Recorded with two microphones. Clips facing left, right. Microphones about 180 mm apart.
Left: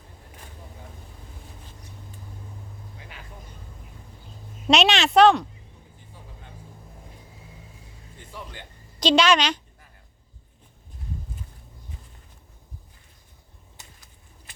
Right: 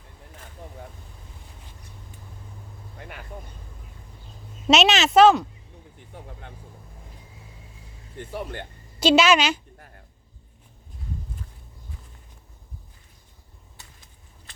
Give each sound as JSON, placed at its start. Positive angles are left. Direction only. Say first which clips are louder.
{"t": 4.7, "sound": "speech", "louder": "right 1 dB", "side_deg": 0}
{"t": 6.1, "sound": "vehicle", "louder": "right 7 dB", "side_deg": -65}
{"t": 8.3, "sound": "speech", "louder": "right 8 dB", "side_deg": -60}
{"t": 9.0, "sound": "a woman's voice", "louder": "right 2 dB", "side_deg": -5}